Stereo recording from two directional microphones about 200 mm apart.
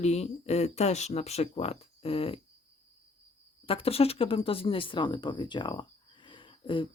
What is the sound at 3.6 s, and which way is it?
Speech, 30° left (ahead or behind).